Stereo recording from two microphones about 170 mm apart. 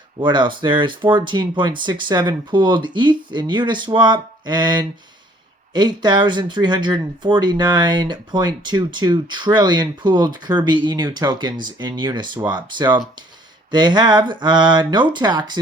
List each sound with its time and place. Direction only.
0.2 s speech: 25° right (ahead or behind)